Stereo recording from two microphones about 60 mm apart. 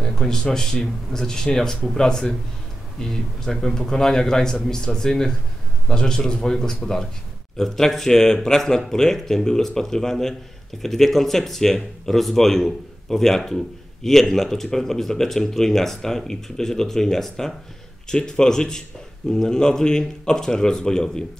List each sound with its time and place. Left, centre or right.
0.0 s speech: centre